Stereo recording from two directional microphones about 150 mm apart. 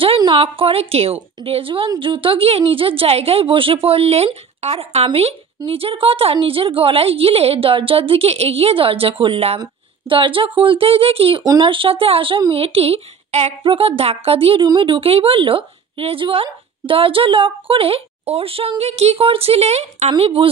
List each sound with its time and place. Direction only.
0.0 s a woman's voice: 35° right (ahead or behind)